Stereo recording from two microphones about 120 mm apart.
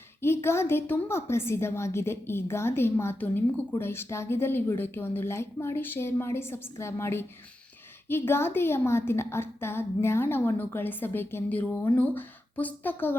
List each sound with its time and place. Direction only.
0.2 s a woman's voice: 20° left (ahead or behind)